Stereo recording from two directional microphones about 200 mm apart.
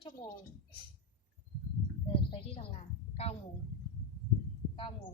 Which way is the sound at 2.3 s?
25° left (ahead or behind).